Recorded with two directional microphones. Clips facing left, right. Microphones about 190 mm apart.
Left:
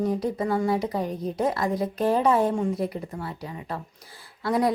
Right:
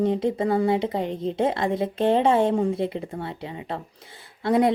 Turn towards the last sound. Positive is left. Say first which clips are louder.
# right 3 dB
turn(degrees=-25)  # may be behind; listen again after turning